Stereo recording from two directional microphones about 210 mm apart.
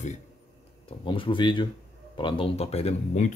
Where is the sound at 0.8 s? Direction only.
25° left (ahead or behind).